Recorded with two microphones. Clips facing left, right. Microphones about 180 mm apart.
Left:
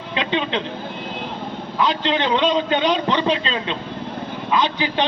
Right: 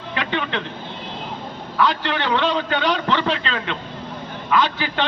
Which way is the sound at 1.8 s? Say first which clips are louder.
Left 1 dB; 20° left (ahead or behind).